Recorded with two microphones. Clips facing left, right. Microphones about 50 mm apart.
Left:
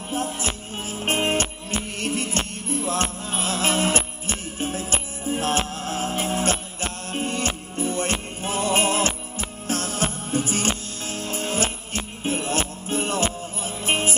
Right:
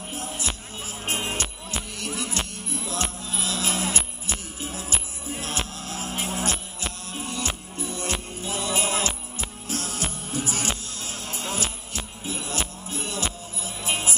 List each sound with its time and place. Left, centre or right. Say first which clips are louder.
0.1 s music: left 6 dB; left